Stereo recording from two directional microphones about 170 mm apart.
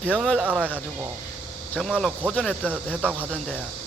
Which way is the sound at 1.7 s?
Centre (ahead or behind).